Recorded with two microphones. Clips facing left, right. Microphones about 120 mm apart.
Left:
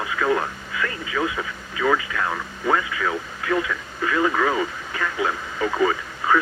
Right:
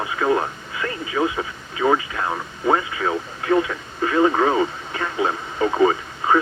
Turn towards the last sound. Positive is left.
turn(degrees=-30)  # may be behind; listen again after turning